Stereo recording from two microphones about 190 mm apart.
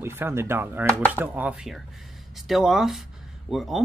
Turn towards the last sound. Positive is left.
turn(degrees=0)  # may be behind; listen again after turning